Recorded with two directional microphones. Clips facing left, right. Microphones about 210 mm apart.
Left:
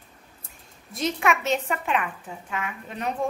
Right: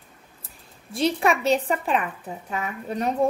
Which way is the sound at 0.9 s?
30° right (ahead or behind).